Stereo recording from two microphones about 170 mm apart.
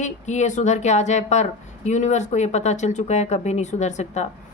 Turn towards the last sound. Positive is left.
turn(degrees=40)  # may be behind; listen again after turning